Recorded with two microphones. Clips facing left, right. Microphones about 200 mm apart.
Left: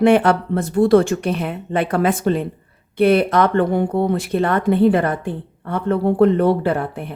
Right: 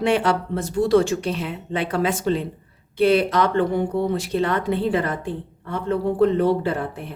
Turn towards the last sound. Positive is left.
turn(degrees=60)  # may be behind; listen again after turning